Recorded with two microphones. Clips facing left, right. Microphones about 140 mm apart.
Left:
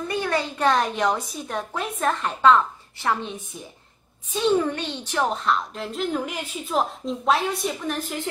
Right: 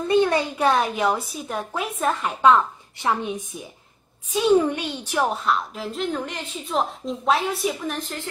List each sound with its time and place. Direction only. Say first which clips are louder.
0.1 s a woman's voice: right 7 dB; 20° right (ahead or behind); by 8.0 s centre (ahead or behind)